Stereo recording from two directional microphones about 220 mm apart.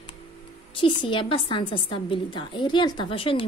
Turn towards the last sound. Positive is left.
turn(degrees=25)  # may be behind; listen again after turning